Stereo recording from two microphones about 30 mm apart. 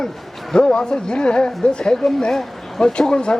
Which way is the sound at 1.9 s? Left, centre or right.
Centre.